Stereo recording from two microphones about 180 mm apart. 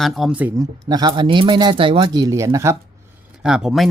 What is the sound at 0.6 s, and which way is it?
Speech, 20° right (ahead or behind).